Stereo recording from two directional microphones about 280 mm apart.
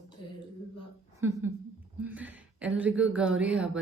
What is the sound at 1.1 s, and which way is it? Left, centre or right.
A woman's voice, centre.